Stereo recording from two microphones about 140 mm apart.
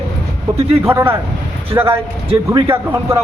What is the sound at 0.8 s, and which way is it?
Speech, 20° right (ahead or behind).